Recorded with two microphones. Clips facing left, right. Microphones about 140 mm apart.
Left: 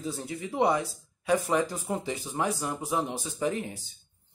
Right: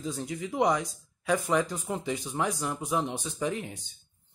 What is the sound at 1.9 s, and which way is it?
Speech, 5° left (ahead or behind).